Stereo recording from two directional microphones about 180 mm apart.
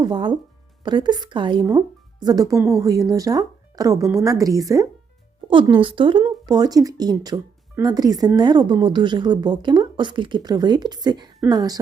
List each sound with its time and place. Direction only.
0.0 s speech: 25° right (ahead or behind)